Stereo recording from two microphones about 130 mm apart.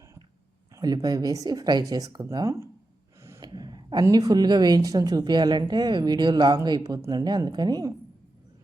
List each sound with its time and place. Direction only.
0.7 s speech: 30° right (ahead or behind)
3.2 s gasp: 20° right (ahead or behind)
3.4 s a sound: 30° right (ahead or behind)
4.0 s a woman's voice: 30° right (ahead or behind)